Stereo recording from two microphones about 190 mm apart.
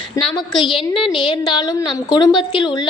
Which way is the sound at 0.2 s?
25° left (ahead or behind).